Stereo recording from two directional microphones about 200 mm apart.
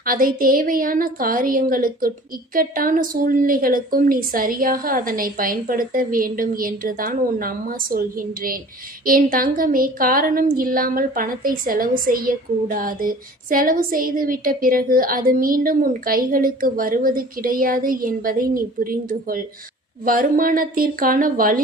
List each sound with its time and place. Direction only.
0.0 s speech: 45° right (ahead or behind)